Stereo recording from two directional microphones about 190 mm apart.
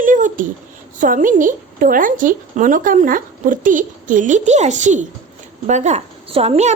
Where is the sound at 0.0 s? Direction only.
45° right (ahead or behind).